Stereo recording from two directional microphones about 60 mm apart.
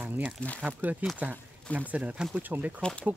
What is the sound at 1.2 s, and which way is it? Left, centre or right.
Speech, right.